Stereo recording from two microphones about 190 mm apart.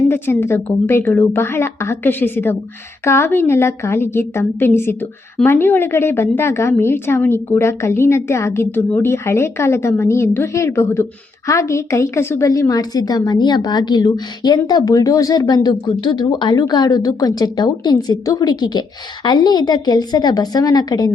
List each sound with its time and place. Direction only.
0.1 s a woman's voice: 10° left (ahead or behind)